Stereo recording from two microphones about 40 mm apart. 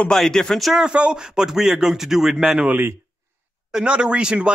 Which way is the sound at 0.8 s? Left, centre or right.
Right.